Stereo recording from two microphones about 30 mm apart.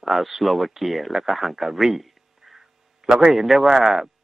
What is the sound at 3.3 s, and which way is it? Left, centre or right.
Speech, centre.